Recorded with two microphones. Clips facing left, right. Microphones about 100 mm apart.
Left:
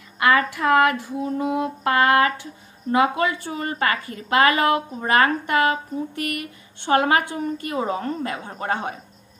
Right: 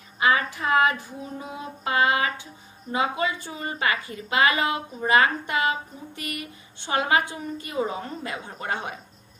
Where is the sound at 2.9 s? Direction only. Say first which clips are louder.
Left 6 dB; 55° left (ahead or behind).